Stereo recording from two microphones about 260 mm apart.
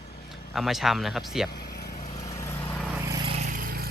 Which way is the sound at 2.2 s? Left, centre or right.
Centre.